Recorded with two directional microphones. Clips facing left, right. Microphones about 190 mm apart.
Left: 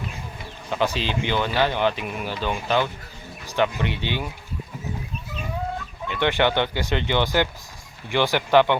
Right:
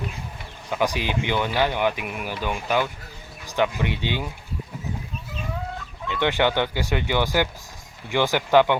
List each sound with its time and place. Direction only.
0.7 s speech: 15° right (ahead or behind)
6.1 s speech: 15° right (ahead or behind)